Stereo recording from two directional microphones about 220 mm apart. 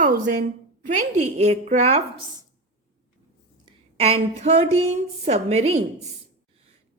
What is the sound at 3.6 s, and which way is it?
A woman's voice, 25° right (ahead or behind).